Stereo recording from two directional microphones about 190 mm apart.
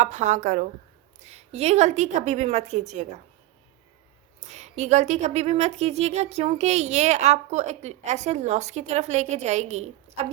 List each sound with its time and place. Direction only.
0.0 s speech: 40° right (ahead or behind)
4.4 s speech: 35° right (ahead or behind)